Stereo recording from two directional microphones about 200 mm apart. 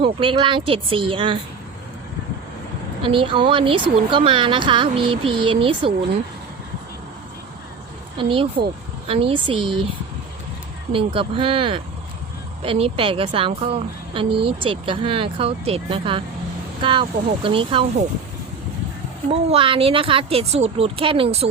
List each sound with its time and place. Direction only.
0.0 s a woman's voice: 25° right (ahead or behind)
3.1 s a woman's voice: 25° right (ahead or behind)
8.2 s a woman's voice: 25° right (ahead or behind)
10.9 s a woman's voice: 25° right (ahead or behind)
19.3 s a woman's voice: 30° right (ahead or behind)